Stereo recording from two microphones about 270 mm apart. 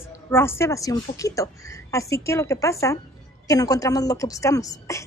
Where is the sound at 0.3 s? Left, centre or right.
Centre.